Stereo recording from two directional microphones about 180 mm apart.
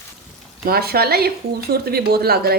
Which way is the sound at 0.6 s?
60° right (ahead or behind).